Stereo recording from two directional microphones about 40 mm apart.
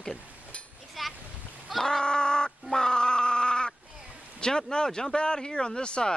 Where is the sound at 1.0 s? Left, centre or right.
Centre.